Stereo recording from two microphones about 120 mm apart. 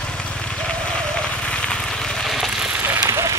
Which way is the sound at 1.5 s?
10° left (ahead or behind).